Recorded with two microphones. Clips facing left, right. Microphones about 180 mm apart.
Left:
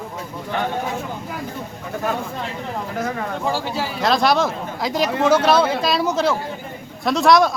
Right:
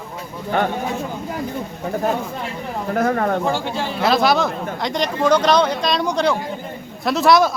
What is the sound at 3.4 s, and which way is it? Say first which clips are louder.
Speech: right 1 dB; 5° left (ahead or behind).